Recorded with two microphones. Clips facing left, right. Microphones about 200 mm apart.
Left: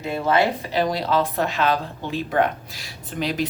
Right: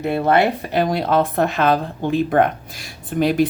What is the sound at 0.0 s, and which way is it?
A woman's voice, 60° right (ahead or behind).